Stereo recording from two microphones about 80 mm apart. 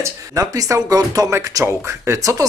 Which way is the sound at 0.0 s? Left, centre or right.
Right.